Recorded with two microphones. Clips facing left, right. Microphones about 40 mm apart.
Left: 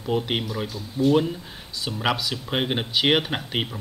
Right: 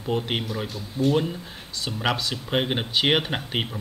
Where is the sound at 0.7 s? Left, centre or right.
Right.